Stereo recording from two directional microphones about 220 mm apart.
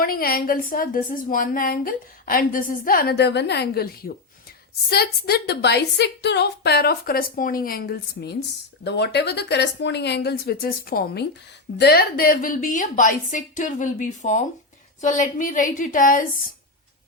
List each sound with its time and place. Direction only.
0.0 s a woman's voice: 40° left (ahead or behind)